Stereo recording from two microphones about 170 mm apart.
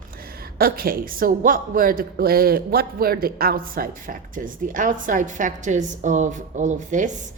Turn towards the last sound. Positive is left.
turn(degrees=-45)  # may be behind; listen again after turning